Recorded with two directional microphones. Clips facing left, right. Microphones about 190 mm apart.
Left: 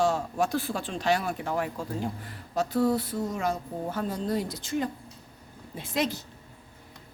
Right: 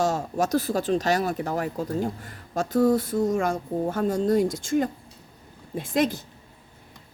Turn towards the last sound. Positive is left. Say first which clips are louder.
# right 5 dB
turn(degrees=-50)  # may be behind; listen again after turning